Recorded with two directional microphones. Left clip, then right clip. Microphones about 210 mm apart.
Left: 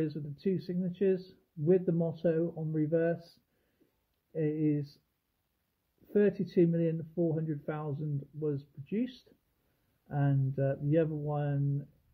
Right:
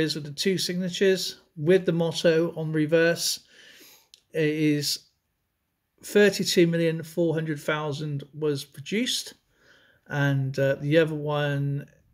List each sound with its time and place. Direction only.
0.0 s speech: 10° right (ahead or behind)
4.3 s speech: 20° right (ahead or behind)
6.0 s speech: 15° right (ahead or behind)